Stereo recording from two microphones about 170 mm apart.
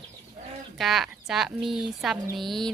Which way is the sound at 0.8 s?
Centre (ahead or behind).